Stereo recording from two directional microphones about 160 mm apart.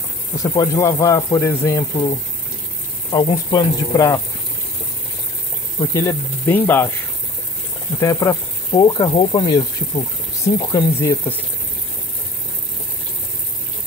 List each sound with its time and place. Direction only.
0.4 s speech: 20° left (ahead or behind)
5.8 s speech: 20° left (ahead or behind)
8.0 s speech: 20° left (ahead or behind)